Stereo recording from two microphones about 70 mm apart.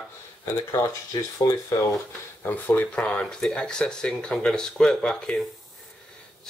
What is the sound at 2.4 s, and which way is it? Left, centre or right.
Speech, left.